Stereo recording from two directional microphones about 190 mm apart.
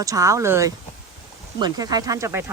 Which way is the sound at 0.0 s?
15° right (ahead or behind).